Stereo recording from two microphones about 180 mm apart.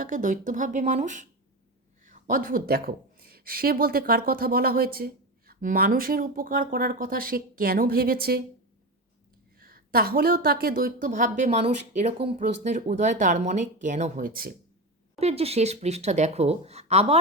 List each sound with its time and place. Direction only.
0.0 s a woman's voice: 45° right (ahead or behind)
9.6 s speech: 55° right (ahead or behind)
15.2 s speech: 35° right (ahead or behind)